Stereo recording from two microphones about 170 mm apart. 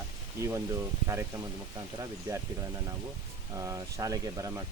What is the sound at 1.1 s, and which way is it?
Speech, 15° right (ahead or behind).